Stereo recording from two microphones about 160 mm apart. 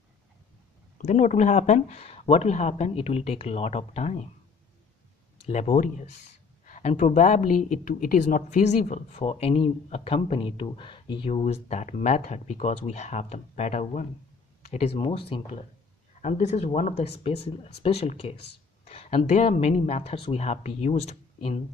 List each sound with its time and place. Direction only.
1.0 s speech: 50° left (ahead or behind)
5.5 s speech: 45° left (ahead or behind)
16.2 s speech: 45° left (ahead or behind)